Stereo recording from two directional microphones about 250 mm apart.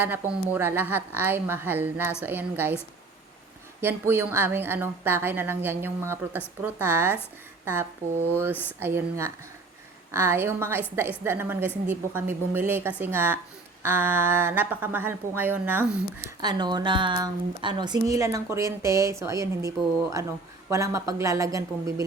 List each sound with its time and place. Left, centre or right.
0.0 s a woman's voice: centre
3.8 s a woman's voice: centre